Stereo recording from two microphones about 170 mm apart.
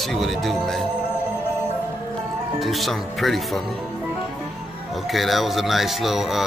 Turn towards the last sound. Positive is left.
turn(degrees=0)  # may be behind; listen again after turning